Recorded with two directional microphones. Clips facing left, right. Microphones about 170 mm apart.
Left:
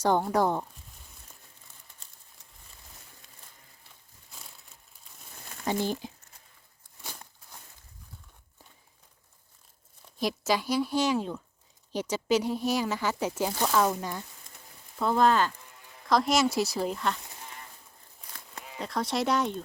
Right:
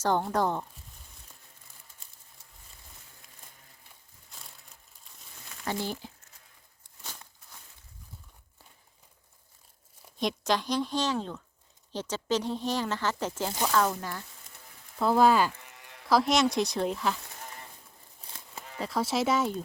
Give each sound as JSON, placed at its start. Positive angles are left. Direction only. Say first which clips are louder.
{"t": 0.0, "sound": "speech", "louder": "left 2 dB", "side_deg": 10}
{"t": 5.6, "sound": "speech", "louder": "left 4 dB", "side_deg": 15}
{"t": 10.2, "sound": "speech", "louder": "left 1 dB", "side_deg": 5}
{"t": 14.9, "sound": "speech", "louder": "right 1 dB", "side_deg": -5}
{"t": 15.5, "sound": "livestock", "louder": "right 1 dB", "side_deg": -75}
{"t": 16.0, "sound": "speech", "louder": "even", "side_deg": 0}
{"t": 18.8, "sound": "speech", "louder": "right 1 dB", "side_deg": -5}